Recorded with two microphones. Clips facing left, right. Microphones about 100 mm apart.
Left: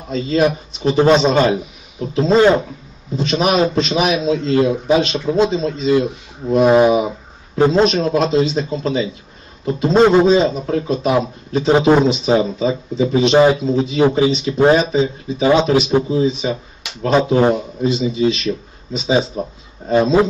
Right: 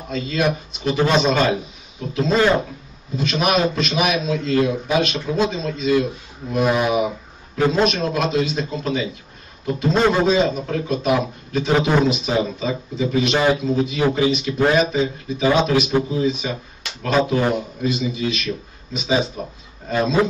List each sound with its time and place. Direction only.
0.1 s a man's voice: 30° left (ahead or behind)
6.5 s a sound: 30° left (ahead or behind)
7.5 s a man's voice: 30° left (ahead or behind)